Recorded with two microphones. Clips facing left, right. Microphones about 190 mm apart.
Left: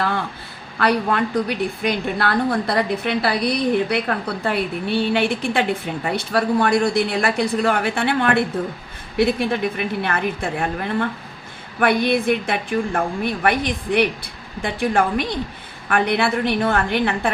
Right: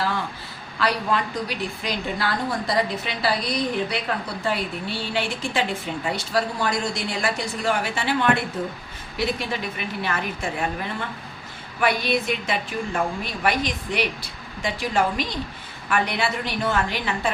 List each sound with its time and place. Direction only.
0.8 s a woman's voice: 55° left (ahead or behind)